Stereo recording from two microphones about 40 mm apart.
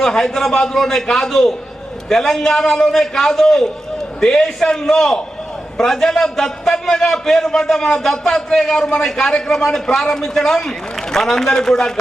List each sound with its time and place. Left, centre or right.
0.0 s a man's voice: centre